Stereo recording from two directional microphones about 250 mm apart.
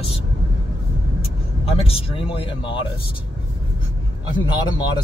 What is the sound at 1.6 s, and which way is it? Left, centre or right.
Speech, left.